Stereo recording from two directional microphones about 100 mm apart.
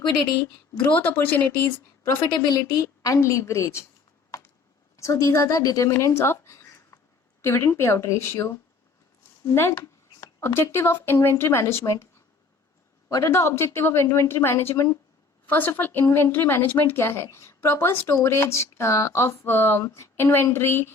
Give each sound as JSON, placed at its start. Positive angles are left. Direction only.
{"t": 0.8, "sound": "speech", "side_deg": 15}
{"t": 2.5, "sound": "a woman's voice", "side_deg": 35}
{"t": 4.9, "sound": "a woman's voice", "side_deg": 30}
{"t": 5.9, "sound": "a sound", "side_deg": 30}
{"t": 7.4, "sound": "speech", "side_deg": 25}
{"t": 9.6, "sound": "speech", "side_deg": 25}
{"t": 13.1, "sound": "a woman's voice", "side_deg": 35}